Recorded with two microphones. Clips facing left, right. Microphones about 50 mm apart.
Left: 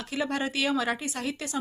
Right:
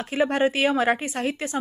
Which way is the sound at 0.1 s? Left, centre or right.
Right.